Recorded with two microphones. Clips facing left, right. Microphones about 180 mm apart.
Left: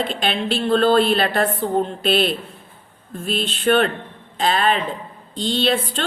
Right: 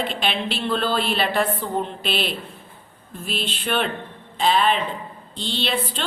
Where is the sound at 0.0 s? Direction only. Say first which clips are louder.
Left 2 dB; 45° left (ahead or behind).